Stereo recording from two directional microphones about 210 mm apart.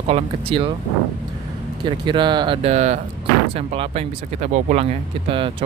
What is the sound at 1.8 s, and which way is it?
Speech, 20° right (ahead or behind).